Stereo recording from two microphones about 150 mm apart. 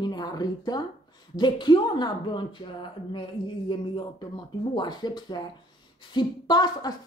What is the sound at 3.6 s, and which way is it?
A woman's voice, 30° left (ahead or behind).